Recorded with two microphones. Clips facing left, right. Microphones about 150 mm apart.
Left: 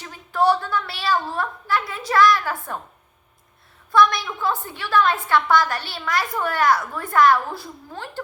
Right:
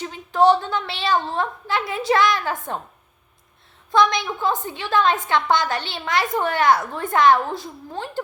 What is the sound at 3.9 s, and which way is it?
A child's voice, 20° right (ahead or behind).